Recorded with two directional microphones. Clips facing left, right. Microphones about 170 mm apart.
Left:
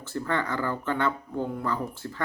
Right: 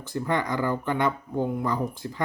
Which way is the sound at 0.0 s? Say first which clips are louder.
Right 2 dB; 15° right (ahead or behind).